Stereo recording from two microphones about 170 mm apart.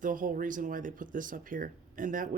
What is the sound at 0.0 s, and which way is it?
Speech, 50° right (ahead or behind).